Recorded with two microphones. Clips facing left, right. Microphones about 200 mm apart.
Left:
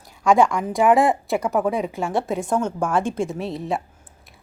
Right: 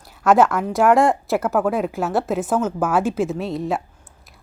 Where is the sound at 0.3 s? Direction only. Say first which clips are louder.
Right 2 dB; 5° right (ahead or behind).